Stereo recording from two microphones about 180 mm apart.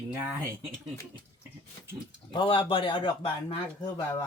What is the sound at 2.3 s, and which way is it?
Speech, 25° left (ahead or behind).